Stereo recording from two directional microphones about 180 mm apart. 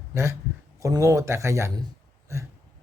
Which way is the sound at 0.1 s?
15° right (ahead or behind).